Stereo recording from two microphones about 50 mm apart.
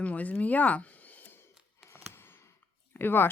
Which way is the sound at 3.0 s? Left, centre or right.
Left.